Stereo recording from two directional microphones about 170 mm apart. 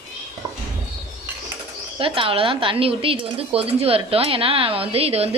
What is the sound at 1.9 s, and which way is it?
Speech, 30° right (ahead or behind).